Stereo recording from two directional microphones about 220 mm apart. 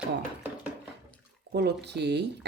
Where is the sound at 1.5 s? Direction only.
50° right (ahead or behind).